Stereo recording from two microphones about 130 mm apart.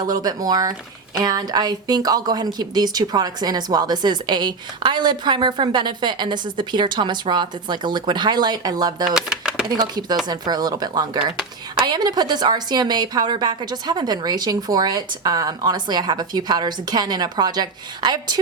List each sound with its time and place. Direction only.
0.0 s speech: 30° right (ahead or behind)
9.1 s a sound: 5° right (ahead or behind)
9.6 s speech: 35° right (ahead or behind)